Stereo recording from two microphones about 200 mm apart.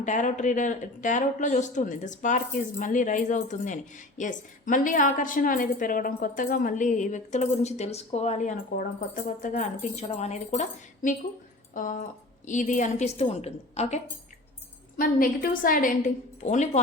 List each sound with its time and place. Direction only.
0.0 s a woman's voice: 40° left (ahead or behind)
14.9 s a woman's voice: 45° left (ahead or behind)